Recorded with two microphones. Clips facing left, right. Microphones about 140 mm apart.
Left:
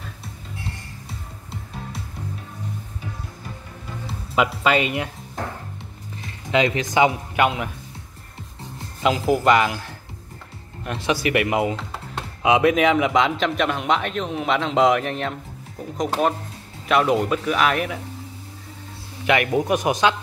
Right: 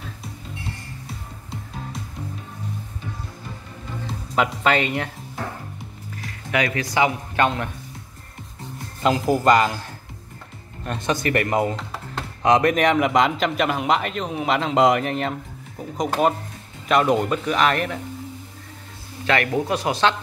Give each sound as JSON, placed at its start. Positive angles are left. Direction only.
{"t": 4.4, "sound": "speech", "side_deg": 10}
{"t": 6.1, "sound": "speech", "side_deg": 25}
{"t": 9.0, "sound": "a man's voice", "side_deg": 0}
{"t": 10.9, "sound": "a man's voice", "side_deg": 5}
{"t": 19.2, "sound": "speech", "side_deg": 15}